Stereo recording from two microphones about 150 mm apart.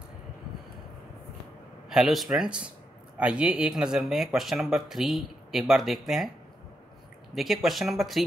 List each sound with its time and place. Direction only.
1.9 s speech: centre (ahead or behind)
7.3 s speech: centre (ahead or behind)